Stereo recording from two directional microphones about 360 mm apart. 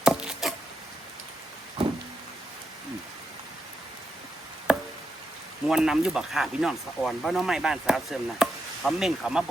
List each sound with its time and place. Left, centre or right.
0.0 s a sound: centre
4.7 s chop: centre
5.6 s speech: centre